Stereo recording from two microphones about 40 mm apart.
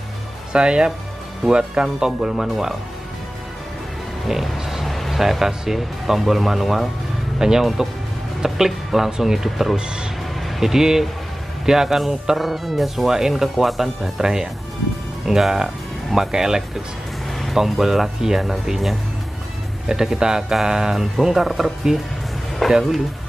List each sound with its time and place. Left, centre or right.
0.5 s speech: right
4.3 s music: centre
5.7 s speech: centre
7.3 s speech: centre
14.2 s speech: centre
17.3 s music: centre
17.6 s speech: centre
19.9 s speech: centre
22.6 s speech: centre